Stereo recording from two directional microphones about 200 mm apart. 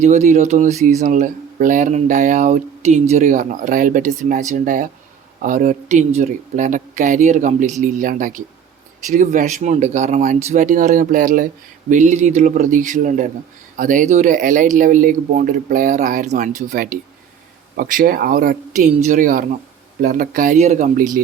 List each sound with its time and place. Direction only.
0.0 s speech: 35° right (ahead or behind)